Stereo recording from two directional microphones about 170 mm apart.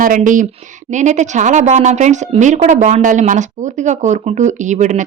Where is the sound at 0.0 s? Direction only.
50° right (ahead or behind).